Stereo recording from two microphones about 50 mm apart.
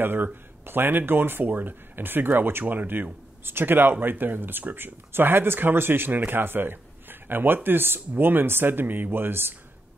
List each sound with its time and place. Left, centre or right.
0.0 s a man's voice: right